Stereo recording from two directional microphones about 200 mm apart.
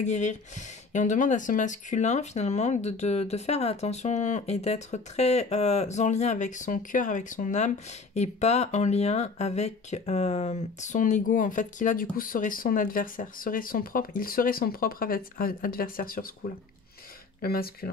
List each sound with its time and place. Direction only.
0.0 s speech: 35° left (ahead or behind)
17.4 s speech: 50° left (ahead or behind)